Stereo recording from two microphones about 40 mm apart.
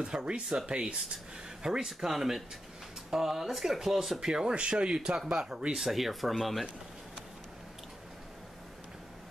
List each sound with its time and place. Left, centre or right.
0.0 s speech: right
1.9 s speech: centre
4.2 s speech: centre
5.8 s speech: centre